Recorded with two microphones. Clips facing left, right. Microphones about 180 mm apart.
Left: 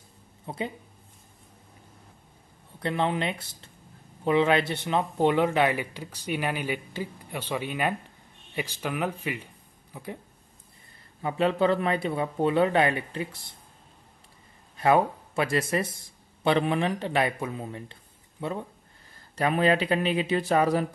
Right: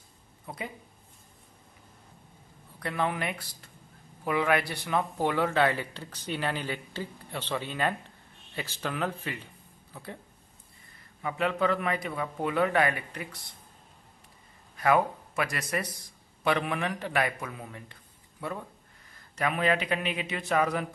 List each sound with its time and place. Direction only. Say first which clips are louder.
0.5 s a man's voice: left 6 dB; 25° left (ahead or behind)
2.8 s a man's voice: left 4 dB; 25° left (ahead or behind)
11.2 s a man's voice: left 4 dB; 30° left (ahead or behind)
14.8 s a man's voice: left 3 dB; 30° left (ahead or behind)